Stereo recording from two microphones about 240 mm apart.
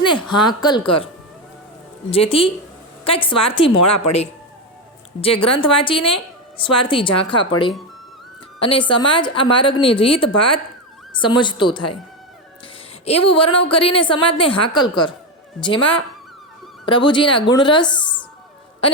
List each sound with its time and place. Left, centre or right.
0.3 s a woman's voice: centre
5.2 s a woman's voice: left
8.5 s a woman's voice: left
13.1 s a woman's voice: left